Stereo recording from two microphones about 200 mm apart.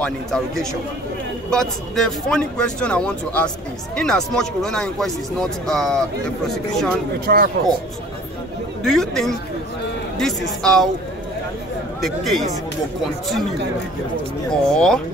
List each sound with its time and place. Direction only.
0.0 s speech: centre (ahead or behind)
7.2 s speech: 50° right (ahead or behind)
8.8 s speech: centre (ahead or behind)
12.0 s speech: centre (ahead or behind)
14.7 s speech: 5° left (ahead or behind)